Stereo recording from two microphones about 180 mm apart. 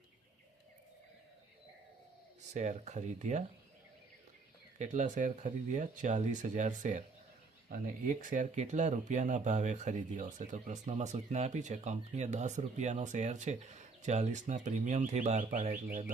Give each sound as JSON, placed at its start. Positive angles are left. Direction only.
{"t": 2.5, "sound": "speech", "side_deg": -40}
{"t": 4.8, "sound": "speech", "side_deg": -40}